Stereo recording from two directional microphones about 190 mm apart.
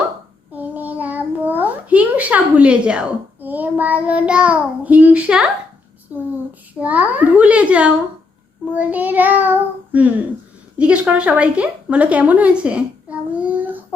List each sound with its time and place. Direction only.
0.5 s a sound: 10° right (ahead or behind)
6.7 s child singing: 10° right (ahead or behind)
10.8 s a woman's voice: 5° right (ahead or behind)